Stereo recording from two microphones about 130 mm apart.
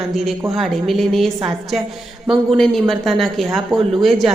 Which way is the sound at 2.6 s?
Centre (ahead or behind).